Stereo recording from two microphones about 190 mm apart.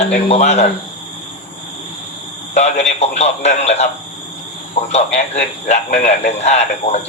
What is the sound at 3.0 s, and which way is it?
Speech, 35° left (ahead or behind).